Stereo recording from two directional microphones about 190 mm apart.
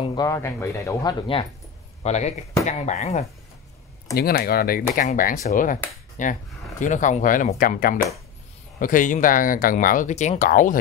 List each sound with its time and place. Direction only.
0.0 s speech: 20° left (ahead or behind)
2.0 s speech: 35° left (ahead or behind)
4.2 s speech: 55° left (ahead or behind)